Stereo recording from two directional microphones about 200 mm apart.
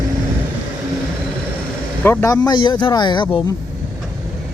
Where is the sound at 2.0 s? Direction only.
15° left (ahead or behind).